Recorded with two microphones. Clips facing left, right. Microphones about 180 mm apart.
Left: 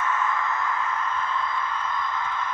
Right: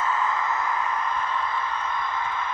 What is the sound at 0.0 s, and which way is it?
Sigh, 30° right (ahead or behind).